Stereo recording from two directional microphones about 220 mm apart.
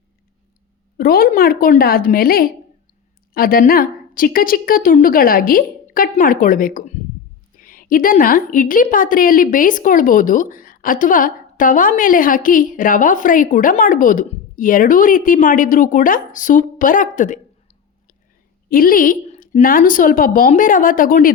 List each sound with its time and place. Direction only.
0.9 s a woman's voice: 40° left (ahead or behind)